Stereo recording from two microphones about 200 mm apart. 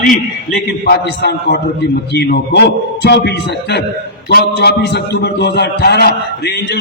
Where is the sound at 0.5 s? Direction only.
55° left (ahead or behind).